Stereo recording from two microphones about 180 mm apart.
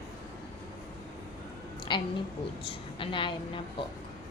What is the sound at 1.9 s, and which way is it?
A woman's voice, 25° left (ahead or behind).